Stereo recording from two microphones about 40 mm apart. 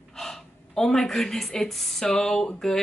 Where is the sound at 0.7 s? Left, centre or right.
Centre.